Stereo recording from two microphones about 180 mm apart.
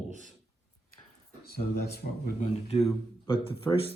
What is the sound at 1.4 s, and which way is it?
Speech, 60° left (ahead or behind).